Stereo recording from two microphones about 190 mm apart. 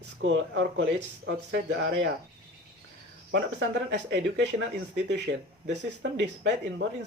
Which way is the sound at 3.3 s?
65° right (ahead or behind).